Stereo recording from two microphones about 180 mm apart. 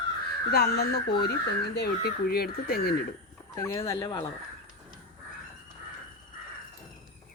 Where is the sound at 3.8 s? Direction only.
30° left (ahead or behind).